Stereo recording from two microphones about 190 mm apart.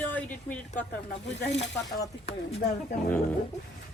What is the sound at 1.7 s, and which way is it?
Speech, 15° left (ahead or behind).